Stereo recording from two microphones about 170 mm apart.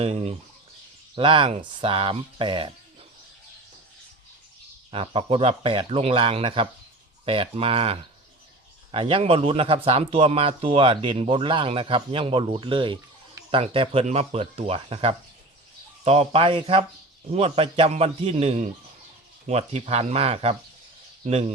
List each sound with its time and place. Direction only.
0.0 s speech: 35° right (ahead or behind)
4.9 s speech: 30° right (ahead or behind)